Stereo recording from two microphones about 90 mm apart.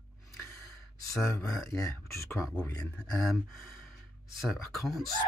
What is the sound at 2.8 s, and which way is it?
Speech, 10° left (ahead or behind).